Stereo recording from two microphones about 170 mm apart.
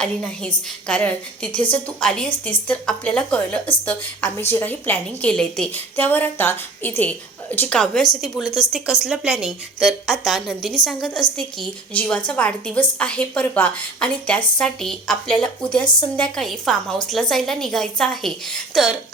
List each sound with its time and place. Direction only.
0.0 s a woman's voice: 5° left (ahead or behind)